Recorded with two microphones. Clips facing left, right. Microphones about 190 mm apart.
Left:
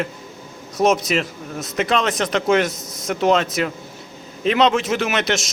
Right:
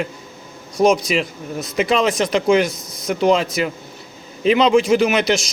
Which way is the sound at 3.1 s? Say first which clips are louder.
Right 1 dB; centre (ahead or behind).